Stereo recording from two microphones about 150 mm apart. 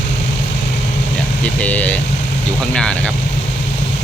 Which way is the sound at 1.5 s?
10° left (ahead or behind).